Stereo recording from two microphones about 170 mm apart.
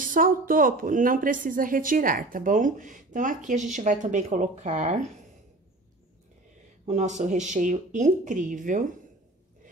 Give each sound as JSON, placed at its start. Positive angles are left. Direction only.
{"t": 0.0, "sound": "a woman's voice", "side_deg": -55}
{"t": 6.9, "sound": "a woman's voice", "side_deg": -45}